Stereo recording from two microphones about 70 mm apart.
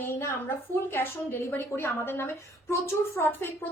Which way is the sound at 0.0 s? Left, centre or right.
Left.